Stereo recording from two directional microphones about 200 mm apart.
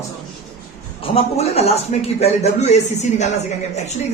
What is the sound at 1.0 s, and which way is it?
A man's voice, 30° left (ahead or behind).